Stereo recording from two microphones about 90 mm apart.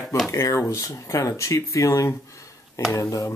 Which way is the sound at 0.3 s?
35° left (ahead or behind).